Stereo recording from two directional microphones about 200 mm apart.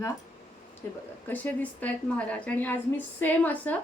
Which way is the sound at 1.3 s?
10° left (ahead or behind).